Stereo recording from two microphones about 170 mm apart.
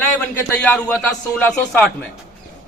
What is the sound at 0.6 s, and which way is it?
A man's voice, 10° left (ahead or behind).